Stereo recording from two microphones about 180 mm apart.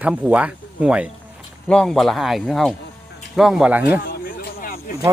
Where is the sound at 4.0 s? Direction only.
60° left (ahead or behind).